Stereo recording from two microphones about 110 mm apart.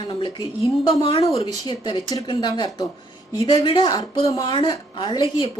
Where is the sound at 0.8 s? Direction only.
55° left (ahead or behind).